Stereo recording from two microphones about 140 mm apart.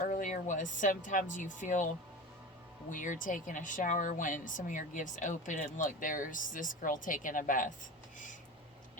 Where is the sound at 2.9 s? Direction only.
70° left (ahead or behind).